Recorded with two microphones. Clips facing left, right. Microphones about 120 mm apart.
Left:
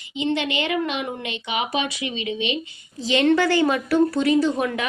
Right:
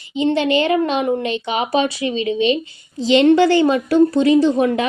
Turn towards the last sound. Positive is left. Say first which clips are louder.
# right 6 dB
turn(degrees=-25)  # may be behind; listen again after turning